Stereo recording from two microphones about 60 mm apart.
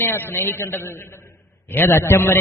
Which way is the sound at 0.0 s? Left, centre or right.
Left.